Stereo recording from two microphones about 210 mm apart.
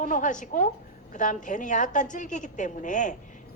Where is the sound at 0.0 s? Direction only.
40° left (ahead or behind).